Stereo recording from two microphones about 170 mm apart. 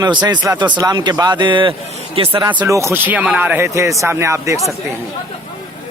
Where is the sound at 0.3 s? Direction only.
10° right (ahead or behind).